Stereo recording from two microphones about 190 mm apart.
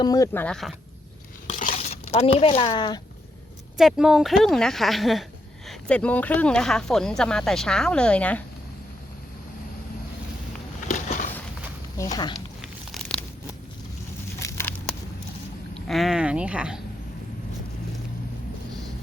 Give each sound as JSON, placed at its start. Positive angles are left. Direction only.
{"t": 0.0, "sound": "speech", "side_deg": 20}
{"t": 0.4, "sound": "speech", "side_deg": 0}
{"t": 1.5, "sound": "a sound", "side_deg": 40}
{"t": 3.8, "sound": "speech", "side_deg": 0}
{"t": 10.8, "sound": "a sound", "side_deg": 40}
{"t": 12.0, "sound": "speech", "side_deg": 15}
{"t": 12.9, "sound": "tearing", "side_deg": 5}
{"t": 14.3, "sound": "a sound", "side_deg": 15}
{"t": 15.9, "sound": "speech", "side_deg": 0}